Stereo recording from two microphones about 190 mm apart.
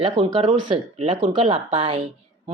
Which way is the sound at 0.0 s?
25° right (ahead or behind).